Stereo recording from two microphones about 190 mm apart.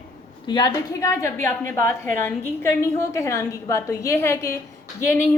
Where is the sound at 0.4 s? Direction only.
20° left (ahead or behind).